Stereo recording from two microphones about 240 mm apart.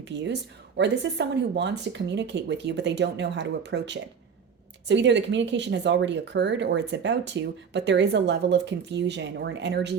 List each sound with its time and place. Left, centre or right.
0.0 s speech: right